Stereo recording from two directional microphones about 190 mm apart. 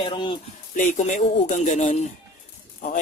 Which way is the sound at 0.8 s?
40° left (ahead or behind).